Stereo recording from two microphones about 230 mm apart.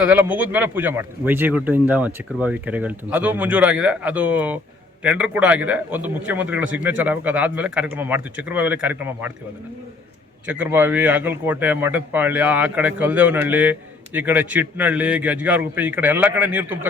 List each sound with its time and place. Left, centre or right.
0.0 s a man's voice: centre
10.4 s a man's voice: centre